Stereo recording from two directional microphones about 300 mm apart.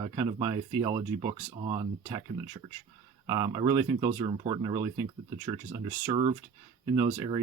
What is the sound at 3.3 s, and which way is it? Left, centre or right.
Speech, centre.